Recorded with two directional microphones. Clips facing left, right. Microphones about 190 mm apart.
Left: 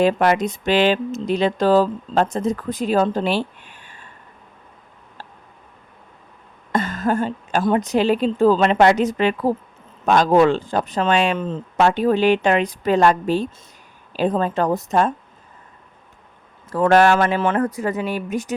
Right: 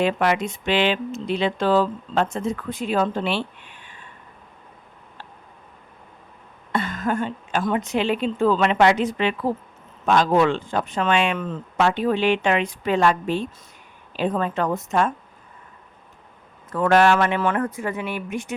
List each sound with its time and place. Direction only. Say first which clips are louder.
0.0 s speech: left 4 dB; 40° left (ahead or behind)
6.7 s speech: left 3 dB; 40° left (ahead or behind)
11.8 s speech: left 4 dB; 40° left (ahead or behind)
16.6 s speech: left 3 dB; 35° left (ahead or behind)